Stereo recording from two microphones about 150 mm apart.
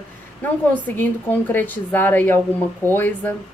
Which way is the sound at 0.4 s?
10° left (ahead or behind).